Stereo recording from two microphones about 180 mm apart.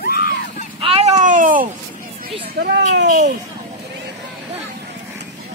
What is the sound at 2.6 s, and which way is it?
Speech, 65° right (ahead or behind).